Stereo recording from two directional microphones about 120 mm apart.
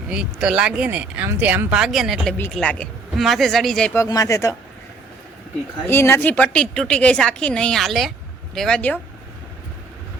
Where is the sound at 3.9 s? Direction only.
30° left (ahead or behind).